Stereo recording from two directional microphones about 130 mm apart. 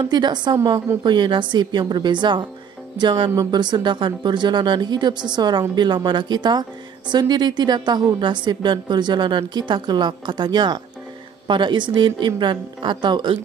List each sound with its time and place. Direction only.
0.0 s a woman's voice: 35° right (ahead or behind)